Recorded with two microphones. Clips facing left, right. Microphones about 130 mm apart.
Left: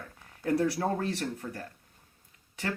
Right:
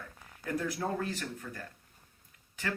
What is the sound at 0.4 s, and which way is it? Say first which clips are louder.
Speech: left 6 dB; 35° left (ahead or behind).